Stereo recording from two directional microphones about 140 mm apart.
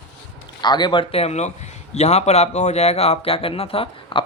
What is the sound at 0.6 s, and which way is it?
A man's voice, 30° left (ahead or behind).